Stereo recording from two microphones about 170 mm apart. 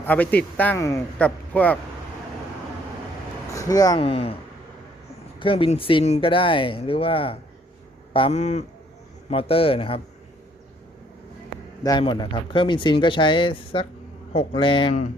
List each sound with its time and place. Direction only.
0.0 s a man's voice: 10° left (ahead or behind)
3.5 s speech: 20° left (ahead or behind)
4.0 s speech: 35° left (ahead or behind)
5.4 s speech: 30° left (ahead or behind)
11.8 s speech: 25° left (ahead or behind)